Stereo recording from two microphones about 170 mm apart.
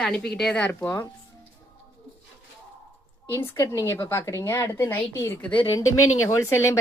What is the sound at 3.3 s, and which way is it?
Speech, 20° left (ahead or behind).